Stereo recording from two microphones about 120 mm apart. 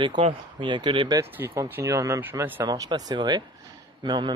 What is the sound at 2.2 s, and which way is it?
Speech, 15° right (ahead or behind).